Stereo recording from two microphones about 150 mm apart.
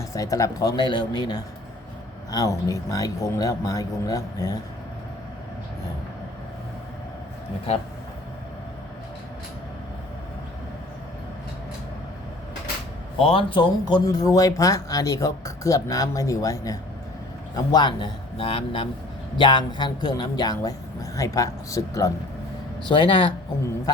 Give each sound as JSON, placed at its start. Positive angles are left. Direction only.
{"t": 0.1, "sound": "speech", "side_deg": 20}
{"t": 13.1, "sound": "a man's voice", "side_deg": 40}
{"t": 22.8, "sound": "a man's voice", "side_deg": 35}